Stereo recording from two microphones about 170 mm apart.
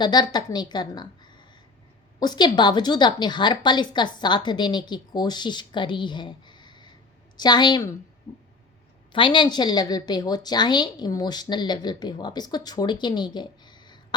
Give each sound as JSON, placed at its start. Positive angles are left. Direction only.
{"t": 0.0, "sound": "a woman's voice", "side_deg": 25}
{"t": 9.1, "sound": "a woman's voice", "side_deg": 30}